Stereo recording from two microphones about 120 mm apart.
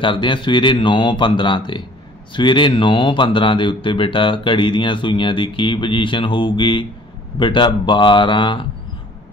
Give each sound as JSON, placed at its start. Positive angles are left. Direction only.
{"t": 0.0, "sound": "speech", "side_deg": 45}